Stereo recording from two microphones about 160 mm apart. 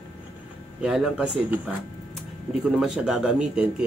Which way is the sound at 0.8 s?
5° right (ahead or behind).